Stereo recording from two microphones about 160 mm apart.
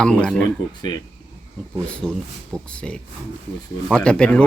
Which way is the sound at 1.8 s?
5° left (ahead or behind).